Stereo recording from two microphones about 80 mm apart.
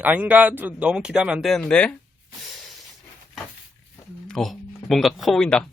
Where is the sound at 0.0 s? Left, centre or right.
Centre.